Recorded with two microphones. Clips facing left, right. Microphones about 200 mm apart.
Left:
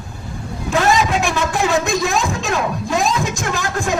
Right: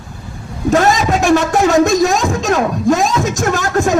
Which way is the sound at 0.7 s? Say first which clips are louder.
Right 4 dB; 45° right (ahead or behind).